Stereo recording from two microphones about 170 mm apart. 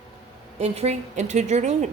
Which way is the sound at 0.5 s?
40° right (ahead or behind).